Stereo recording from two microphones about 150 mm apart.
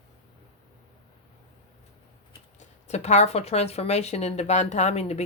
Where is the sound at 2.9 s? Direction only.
50° left (ahead or behind).